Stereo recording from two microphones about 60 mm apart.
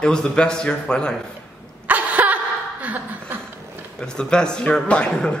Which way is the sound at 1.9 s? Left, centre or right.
Right.